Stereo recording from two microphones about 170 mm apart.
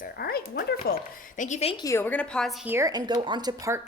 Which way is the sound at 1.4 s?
40° left (ahead or behind).